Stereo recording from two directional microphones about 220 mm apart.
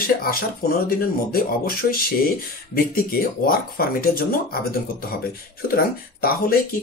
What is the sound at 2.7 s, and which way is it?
Speech, 40° left (ahead or behind).